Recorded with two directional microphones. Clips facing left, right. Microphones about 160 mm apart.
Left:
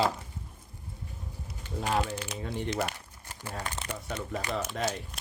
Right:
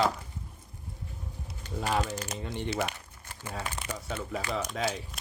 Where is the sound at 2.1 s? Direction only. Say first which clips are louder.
Right 1 dB; 45° right (ahead or behind).